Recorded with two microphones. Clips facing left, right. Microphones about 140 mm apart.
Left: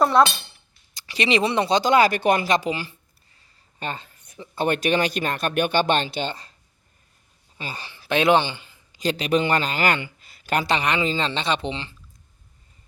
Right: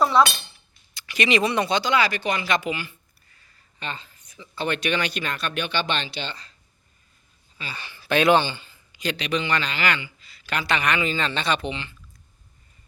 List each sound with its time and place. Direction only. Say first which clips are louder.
0.0 s speech: left 2 dB; 50° left (ahead or behind)
0.9 s speech: left 1 dB; 30° left (ahead or behind)
1.8 s speech: left 5 dB; 45° left (ahead or behind)
2.5 s speech: left 3 dB; 35° left (ahead or behind)
3.8 s speech: left 3 dB; 50° left (ahead or behind)
7.6 s speech: left 3 dB; 45° left (ahead or behind)
7.9 s speech: even; 20° left (ahead or behind)
8.9 s a man's voice: left 5 dB; 40° left (ahead or behind)
10.7 s speech: right 1 dB; 30° left (ahead or behind)